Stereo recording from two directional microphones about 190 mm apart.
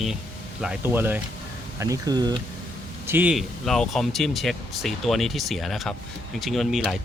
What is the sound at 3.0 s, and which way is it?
Speech, 10° right (ahead or behind).